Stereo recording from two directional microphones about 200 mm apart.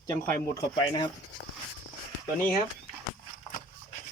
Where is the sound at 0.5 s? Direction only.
20° left (ahead or behind).